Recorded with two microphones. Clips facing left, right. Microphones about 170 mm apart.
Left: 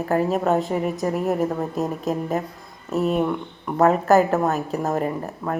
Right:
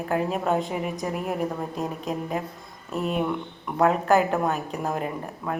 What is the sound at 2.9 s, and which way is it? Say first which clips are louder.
Speech: left 5 dB; 40° left (ahead or behind).